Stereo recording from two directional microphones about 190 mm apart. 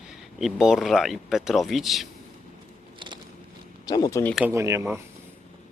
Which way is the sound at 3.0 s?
25° right (ahead or behind).